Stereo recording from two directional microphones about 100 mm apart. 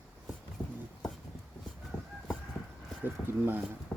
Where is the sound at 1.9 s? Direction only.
10° left (ahead or behind).